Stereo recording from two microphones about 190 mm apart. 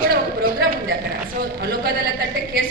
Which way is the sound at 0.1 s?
50° right (ahead or behind).